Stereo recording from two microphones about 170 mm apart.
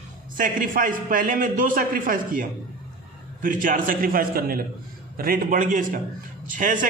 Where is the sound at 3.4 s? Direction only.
50° right (ahead or behind).